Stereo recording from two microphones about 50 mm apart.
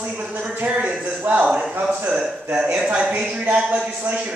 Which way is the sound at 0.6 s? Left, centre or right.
Right.